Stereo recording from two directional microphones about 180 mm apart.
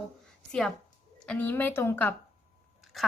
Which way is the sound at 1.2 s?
5° left (ahead or behind).